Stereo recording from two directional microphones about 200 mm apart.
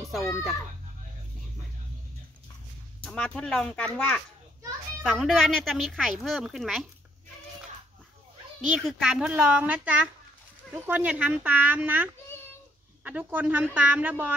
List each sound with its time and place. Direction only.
0.1 s a woman's voice: centre (ahead or behind)
3.1 s a woman's voice: 5° left (ahead or behind)
8.8 s a woman's voice: centre (ahead or behind)